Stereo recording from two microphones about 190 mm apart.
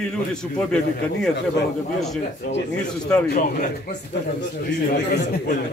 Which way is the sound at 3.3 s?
45° left (ahead or behind).